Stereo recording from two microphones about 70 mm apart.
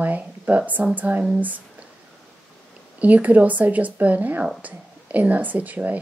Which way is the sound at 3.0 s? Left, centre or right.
Right.